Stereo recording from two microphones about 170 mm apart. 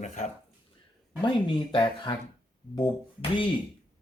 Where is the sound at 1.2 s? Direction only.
30° left (ahead or behind).